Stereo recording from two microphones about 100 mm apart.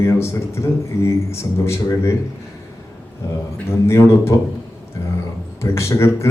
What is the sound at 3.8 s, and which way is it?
Speech, 30° left (ahead or behind).